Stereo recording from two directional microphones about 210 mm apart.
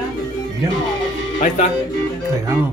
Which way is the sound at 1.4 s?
35° left (ahead or behind).